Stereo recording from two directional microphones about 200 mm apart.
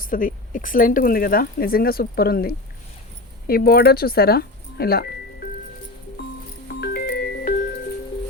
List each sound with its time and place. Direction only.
0.0 s speech: 45° left (ahead or behind)
6.7 s music: 55° left (ahead or behind)